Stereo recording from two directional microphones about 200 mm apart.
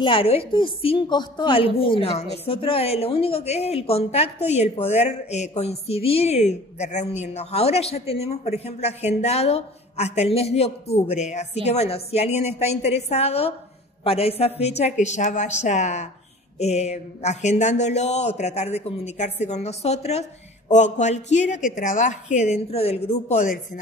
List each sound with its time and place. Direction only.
0.0 s a woman's voice: 25° left (ahead or behind)